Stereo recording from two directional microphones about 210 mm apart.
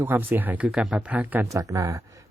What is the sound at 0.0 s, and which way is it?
Speech, 10° right (ahead or behind).